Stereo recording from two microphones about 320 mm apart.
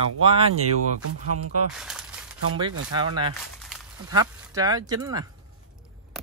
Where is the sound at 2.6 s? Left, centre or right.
Centre.